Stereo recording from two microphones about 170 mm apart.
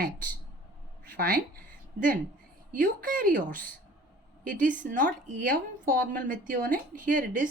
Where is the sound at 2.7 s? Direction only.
55° right (ahead or behind).